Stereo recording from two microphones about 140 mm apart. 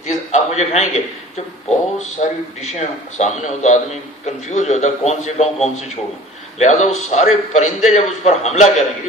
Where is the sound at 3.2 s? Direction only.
55° left (ahead or behind).